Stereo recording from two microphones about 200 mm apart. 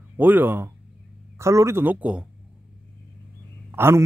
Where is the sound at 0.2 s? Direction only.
10° right (ahead or behind).